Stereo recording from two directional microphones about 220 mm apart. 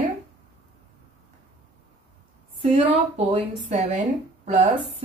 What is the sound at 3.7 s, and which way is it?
A woman's voice, 35° right (ahead or behind).